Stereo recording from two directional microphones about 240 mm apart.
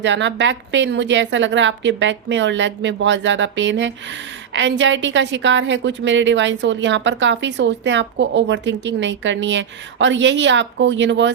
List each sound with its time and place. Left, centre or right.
0.0 s a woman's voice: right